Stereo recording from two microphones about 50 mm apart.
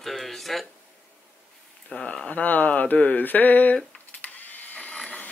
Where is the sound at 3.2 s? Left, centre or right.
Left.